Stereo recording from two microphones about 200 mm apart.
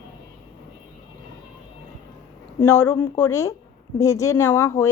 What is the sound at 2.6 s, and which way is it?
A woman's voice, 10° left (ahead or behind).